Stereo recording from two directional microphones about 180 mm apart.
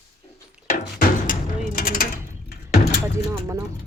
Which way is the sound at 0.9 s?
50° left (ahead or behind).